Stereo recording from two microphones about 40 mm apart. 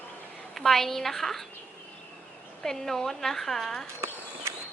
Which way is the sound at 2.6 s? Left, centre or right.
Centre.